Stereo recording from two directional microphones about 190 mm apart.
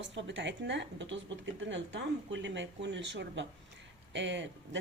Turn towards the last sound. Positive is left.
turn(degrees=-70)  # may be behind; listen again after turning